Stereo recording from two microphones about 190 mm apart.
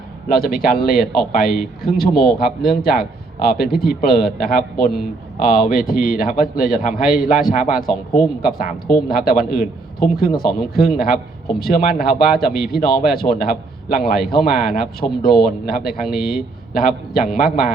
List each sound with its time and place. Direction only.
0.3 s a man's voice: 50° left (ahead or behind)